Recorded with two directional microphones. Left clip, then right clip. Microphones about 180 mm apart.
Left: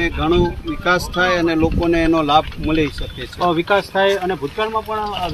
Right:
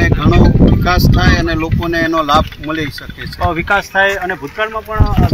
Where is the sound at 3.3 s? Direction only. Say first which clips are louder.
Right 2 dB; 25° right (ahead or behind).